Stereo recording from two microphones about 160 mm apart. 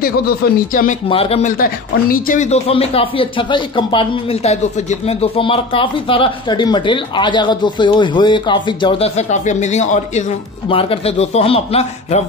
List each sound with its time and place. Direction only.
1.0 s speech: 35° left (ahead or behind)
1.4 s speech: 65° left (ahead or behind)
2.5 s speech: 40° left (ahead or behind)
10.7 s speech: 35° left (ahead or behind)